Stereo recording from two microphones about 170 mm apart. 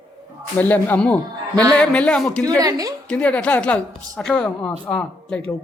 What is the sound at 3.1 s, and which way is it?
A woman's voice, 5° left (ahead or behind).